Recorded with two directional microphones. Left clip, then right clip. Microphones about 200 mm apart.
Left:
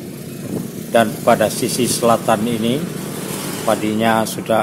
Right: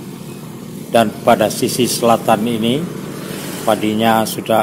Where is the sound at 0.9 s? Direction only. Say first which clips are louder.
Right 2 dB; 10° right (ahead or behind).